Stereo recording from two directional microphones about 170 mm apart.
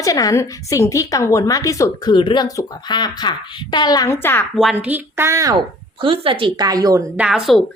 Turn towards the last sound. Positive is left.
turn(degrees=0)  # may be behind; listen again after turning